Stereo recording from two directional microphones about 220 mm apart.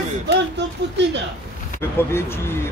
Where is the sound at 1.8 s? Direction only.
10° left (ahead or behind).